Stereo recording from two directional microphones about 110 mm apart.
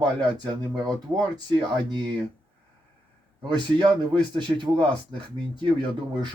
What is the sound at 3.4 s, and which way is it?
Speech, 45° right (ahead or behind).